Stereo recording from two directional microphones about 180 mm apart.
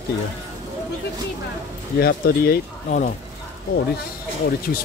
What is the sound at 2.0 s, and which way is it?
Speech, 60° left (ahead or behind).